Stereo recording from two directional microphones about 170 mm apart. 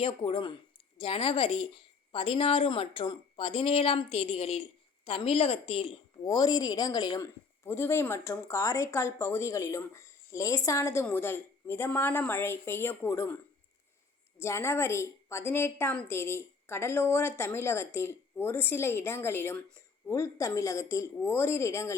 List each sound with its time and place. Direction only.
0.0 s a woman's voice: 30° left (ahead or behind)
7.6 s speech: 15° left (ahead or behind)